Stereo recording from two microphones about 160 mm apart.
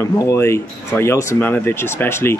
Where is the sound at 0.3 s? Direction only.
15° left (ahead or behind).